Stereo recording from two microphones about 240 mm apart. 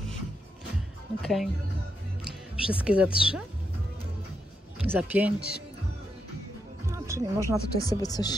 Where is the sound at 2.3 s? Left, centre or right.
Centre.